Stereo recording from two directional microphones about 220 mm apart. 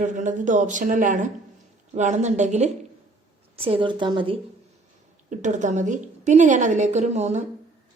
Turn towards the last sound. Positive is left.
turn(degrees=-30)  # may be behind; listen again after turning